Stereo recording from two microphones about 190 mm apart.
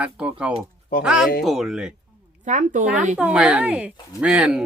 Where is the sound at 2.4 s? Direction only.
40° right (ahead or behind).